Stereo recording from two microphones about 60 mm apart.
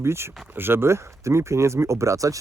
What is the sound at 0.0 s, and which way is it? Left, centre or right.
Speech, right.